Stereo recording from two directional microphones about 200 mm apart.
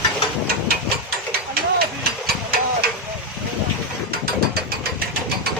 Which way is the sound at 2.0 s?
50° right (ahead or behind).